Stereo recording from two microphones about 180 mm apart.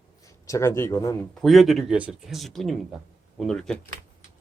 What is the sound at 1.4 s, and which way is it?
Speech, centre (ahead or behind).